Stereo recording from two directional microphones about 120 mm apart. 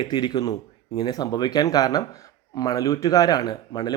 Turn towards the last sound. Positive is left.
turn(degrees=35)  # may be behind; listen again after turning